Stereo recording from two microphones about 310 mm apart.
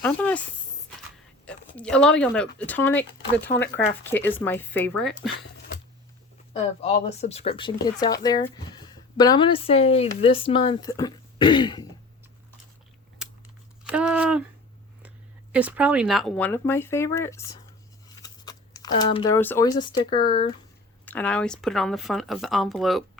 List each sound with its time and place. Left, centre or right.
0.0 s speech: centre
1.5 s speech: centre
6.5 s speech: centre
13.2 s scissors: centre
13.8 s a sound: centre
15.5 s speech: centre
18.1 s a sound: centre
20.2 s speech: centre
21.0 s speech: centre